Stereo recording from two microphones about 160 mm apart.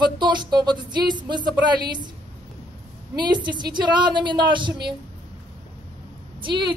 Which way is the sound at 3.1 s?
30° right (ahead or behind).